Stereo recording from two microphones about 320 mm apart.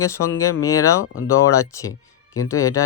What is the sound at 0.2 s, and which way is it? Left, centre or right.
Speech, left.